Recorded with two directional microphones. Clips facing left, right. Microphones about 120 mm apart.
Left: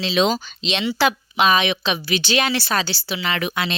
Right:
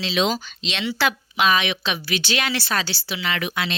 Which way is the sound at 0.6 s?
20° left (ahead or behind).